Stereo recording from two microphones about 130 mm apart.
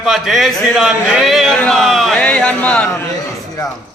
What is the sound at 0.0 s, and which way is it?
A man's voice, centre (ahead or behind).